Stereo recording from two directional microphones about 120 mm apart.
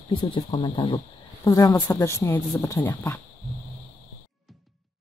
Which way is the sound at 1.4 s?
25° left (ahead or behind).